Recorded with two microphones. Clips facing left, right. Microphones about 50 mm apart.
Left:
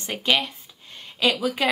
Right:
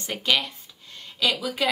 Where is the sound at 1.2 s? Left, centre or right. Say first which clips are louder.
Left 3 dB; left.